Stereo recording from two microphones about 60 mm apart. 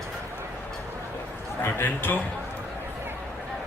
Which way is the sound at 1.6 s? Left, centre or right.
Left.